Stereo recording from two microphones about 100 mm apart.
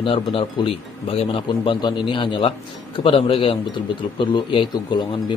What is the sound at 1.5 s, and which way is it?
A man's voice, 55° left (ahead or behind).